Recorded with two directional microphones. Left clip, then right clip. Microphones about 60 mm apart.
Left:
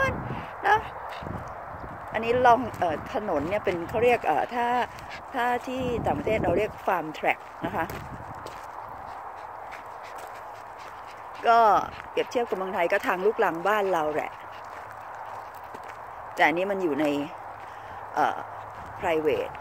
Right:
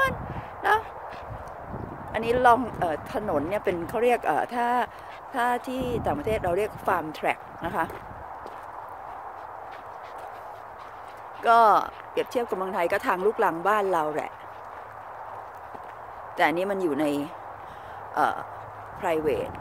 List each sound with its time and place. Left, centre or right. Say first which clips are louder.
0.6 s a sound: left 1 dB; right
2.1 s speech: even; right
3.8 s speech: left 1 dB; right
5.3 s speech: right 1 dB; right
11.4 s speech: right 1 dB; right
12.8 s speech: left 1 dB; centre
16.3 s speech: left 1 dB; right